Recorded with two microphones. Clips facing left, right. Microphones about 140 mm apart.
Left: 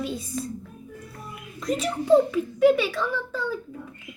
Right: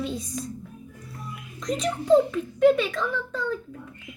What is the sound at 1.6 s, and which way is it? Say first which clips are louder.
A child's voice: even; 5° left (ahead or behind).